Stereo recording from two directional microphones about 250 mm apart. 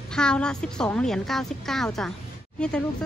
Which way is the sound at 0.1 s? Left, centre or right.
Centre.